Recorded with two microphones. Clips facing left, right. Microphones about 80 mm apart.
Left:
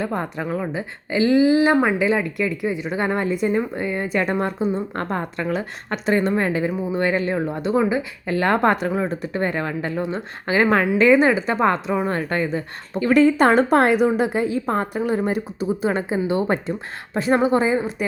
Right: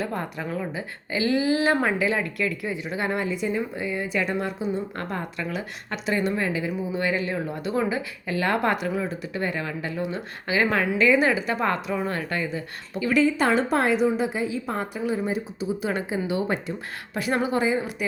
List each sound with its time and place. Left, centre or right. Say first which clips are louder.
0.0 s a woman's voice: left 4 dB; left
3.0 s a woman's voice: left 5 dB; left
8.3 s a woman's voice: left 5 dB; left
15.8 s a woman's voice: left 6 dB; left